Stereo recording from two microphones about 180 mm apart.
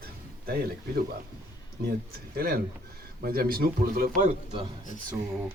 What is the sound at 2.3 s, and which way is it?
Speech, 60° right (ahead or behind).